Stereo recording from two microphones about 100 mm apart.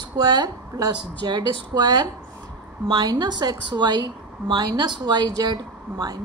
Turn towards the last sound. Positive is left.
turn(degrees=-45)  # may be behind; listen again after turning